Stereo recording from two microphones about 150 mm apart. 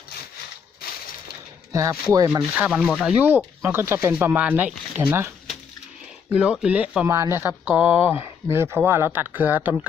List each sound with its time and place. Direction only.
1.7 s speech: 20° right (ahead or behind)
2.6 s speech: 5° right (ahead or behind)
6.3 s speech: 5° right (ahead or behind)